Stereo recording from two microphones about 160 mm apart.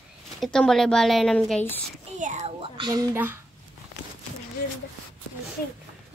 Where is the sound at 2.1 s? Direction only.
50° right (ahead or behind).